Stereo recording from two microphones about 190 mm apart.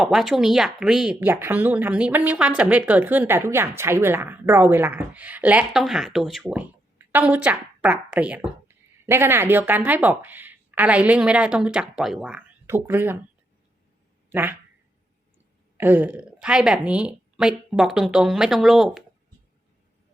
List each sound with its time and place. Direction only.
0.0 s a woman's voice: centre (ahead or behind)
14.3 s speech: 10° right (ahead or behind)
15.8 s a woman's voice: 10° right (ahead or behind)